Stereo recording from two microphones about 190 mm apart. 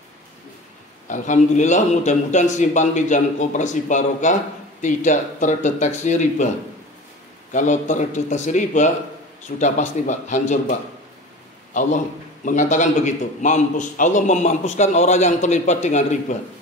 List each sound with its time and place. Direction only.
1.0 s a man's voice: 40° left (ahead or behind)
7.5 s a man's voice: 40° left (ahead or behind)
12.4 s a man's voice: 40° left (ahead or behind)